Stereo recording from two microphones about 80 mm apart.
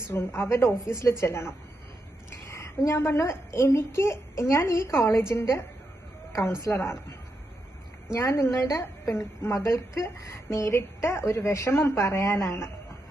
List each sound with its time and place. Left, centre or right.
0.0 s a woman's voice: left
8.1 s a woman's voice: left